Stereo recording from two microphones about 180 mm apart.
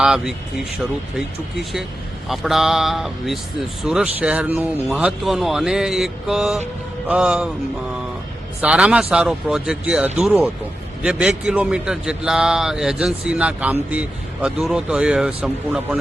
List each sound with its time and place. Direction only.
0.0 s a man's voice: 5° right (ahead or behind)
2.2 s a man's voice: centre (ahead or behind)
8.6 s a man's voice: 5° right (ahead or behind)